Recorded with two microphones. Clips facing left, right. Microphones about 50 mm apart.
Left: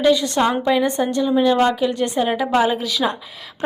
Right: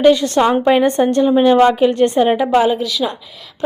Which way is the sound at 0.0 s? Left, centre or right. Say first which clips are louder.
Right 5 dB; right.